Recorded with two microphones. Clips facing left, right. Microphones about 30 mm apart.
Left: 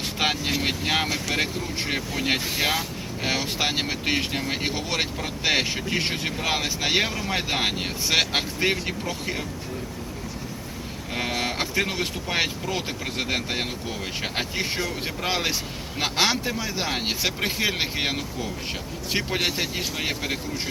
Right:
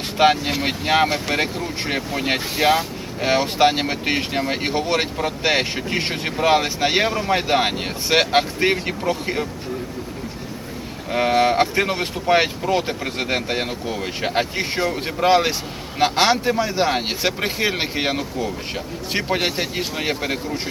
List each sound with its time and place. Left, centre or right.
0.2 s speech: centre
2.6 s speech: right
3.2 s speech: centre
11.1 s speech: centre